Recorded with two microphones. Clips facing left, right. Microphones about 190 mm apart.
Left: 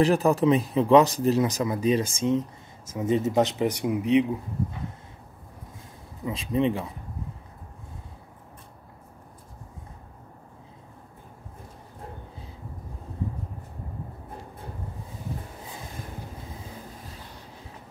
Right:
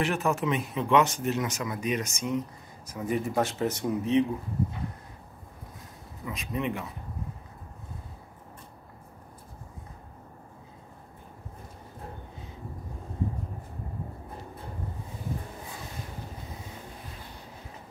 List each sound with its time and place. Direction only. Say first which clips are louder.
0.0 s speech: left 7 dB; 35° left (ahead or behind); by 4.3 s 15° left (ahead or behind)
6.2 s speech: left 7 dB; 30° left (ahead or behind)